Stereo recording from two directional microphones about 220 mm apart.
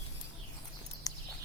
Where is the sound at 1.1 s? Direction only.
15° left (ahead or behind).